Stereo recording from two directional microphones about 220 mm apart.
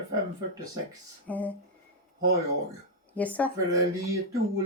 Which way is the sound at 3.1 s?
5° left (ahead or behind).